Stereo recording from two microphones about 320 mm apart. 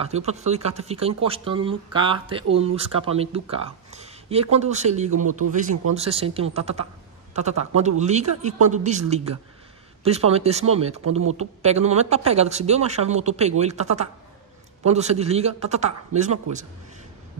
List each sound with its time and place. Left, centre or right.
0.0 s speech: centre